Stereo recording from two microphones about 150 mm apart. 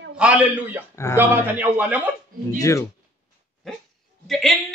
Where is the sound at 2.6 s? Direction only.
20° left (ahead or behind).